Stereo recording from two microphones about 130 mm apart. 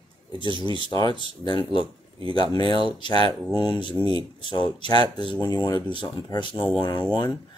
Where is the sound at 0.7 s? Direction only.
30° left (ahead or behind).